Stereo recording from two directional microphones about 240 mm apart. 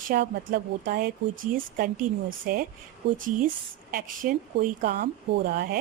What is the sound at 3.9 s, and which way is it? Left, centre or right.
Speech, right.